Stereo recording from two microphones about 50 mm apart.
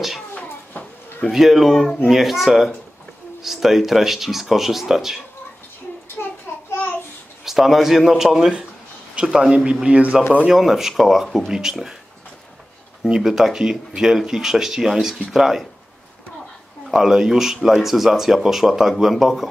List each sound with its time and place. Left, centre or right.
0.3 s a sound: left
1.3 s speech: centre
6.5 s a sound: left
7.4 s speech: centre
10.5 s speech: centre
13.1 s speech: centre
16.9 s speech: centre